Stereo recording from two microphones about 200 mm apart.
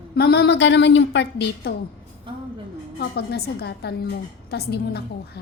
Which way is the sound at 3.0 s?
55° left (ahead or behind).